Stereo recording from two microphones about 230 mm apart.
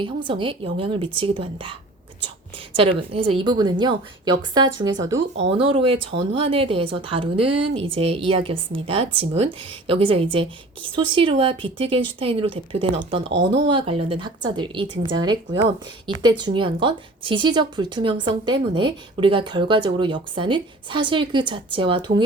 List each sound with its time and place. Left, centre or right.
0.0 s speech: right
2.7 s speech: right